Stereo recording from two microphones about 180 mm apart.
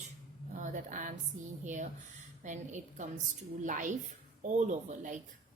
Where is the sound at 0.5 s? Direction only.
45° right (ahead or behind).